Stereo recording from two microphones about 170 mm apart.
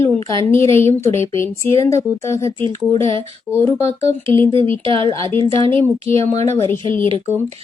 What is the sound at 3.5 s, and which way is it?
Speech, 10° left (ahead or behind).